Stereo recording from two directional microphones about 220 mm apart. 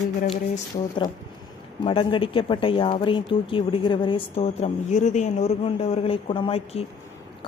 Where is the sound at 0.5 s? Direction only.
20° left (ahead or behind).